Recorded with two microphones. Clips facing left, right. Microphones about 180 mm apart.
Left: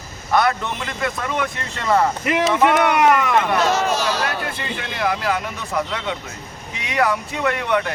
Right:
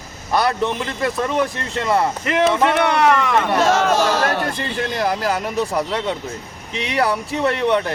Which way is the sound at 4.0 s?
50° right (ahead or behind).